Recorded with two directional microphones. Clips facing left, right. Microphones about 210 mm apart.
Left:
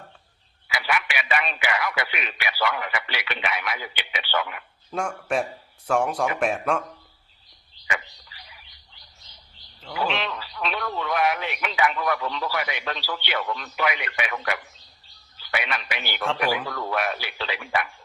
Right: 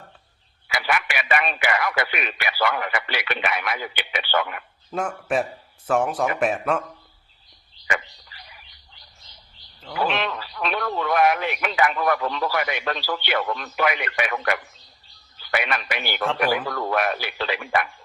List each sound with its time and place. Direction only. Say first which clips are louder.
0.7 s speech: right 2 dB; 45° right (ahead or behind)
4.9 s speech: right 2 dB; 5° right (ahead or behind)
7.9 s a sound: right 4 dB; 50° right (ahead or behind)
10.1 s speech: right 2 dB; 50° right (ahead or behind)